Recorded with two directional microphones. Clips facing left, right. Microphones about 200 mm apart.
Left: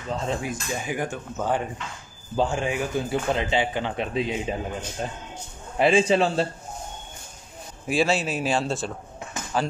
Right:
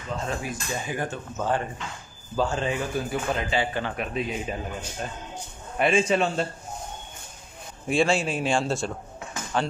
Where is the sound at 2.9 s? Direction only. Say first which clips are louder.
Left 2 dB; 25° left (ahead or behind).